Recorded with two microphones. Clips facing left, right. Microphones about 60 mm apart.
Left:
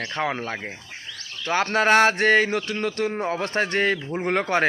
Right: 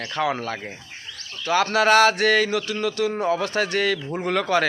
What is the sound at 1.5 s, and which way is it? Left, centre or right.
Speech, left.